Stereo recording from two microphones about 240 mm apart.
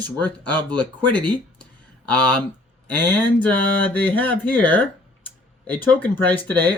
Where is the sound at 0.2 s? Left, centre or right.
Centre.